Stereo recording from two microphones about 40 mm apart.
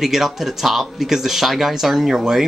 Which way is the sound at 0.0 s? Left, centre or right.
Centre.